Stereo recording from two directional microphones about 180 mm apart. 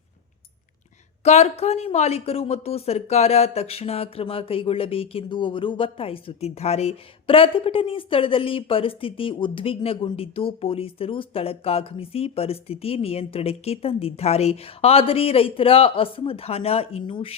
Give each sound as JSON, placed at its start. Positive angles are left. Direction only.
{"t": 1.2, "sound": "speech", "side_deg": 40}